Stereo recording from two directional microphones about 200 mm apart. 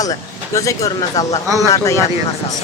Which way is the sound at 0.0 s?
15° left (ahead or behind).